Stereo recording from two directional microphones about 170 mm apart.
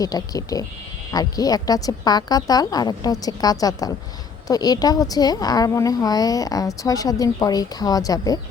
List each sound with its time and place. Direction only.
0.0 s a woman's voice: 20° left (ahead or behind)